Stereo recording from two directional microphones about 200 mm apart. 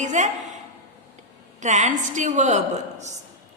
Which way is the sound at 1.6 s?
35° right (ahead or behind).